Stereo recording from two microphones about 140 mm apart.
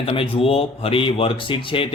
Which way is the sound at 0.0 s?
40° left (ahead or behind).